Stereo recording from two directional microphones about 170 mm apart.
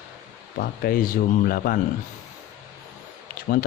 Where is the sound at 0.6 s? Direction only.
60° left (ahead or behind).